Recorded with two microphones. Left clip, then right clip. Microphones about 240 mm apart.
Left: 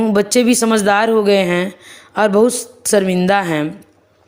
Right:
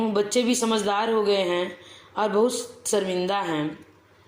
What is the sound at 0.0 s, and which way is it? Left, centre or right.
A woman's voice, left.